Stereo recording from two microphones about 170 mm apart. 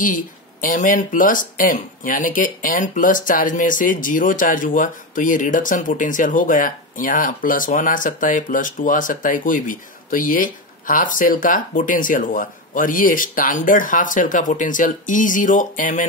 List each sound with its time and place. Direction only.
0.0 s speech: 50° left (ahead or behind)